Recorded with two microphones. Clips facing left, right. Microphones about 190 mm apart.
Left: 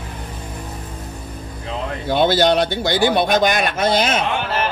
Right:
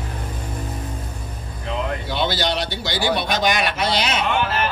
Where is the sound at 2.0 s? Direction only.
50° left (ahead or behind).